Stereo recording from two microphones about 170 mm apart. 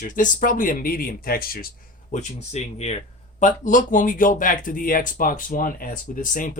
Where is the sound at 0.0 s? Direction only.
50° left (ahead or behind).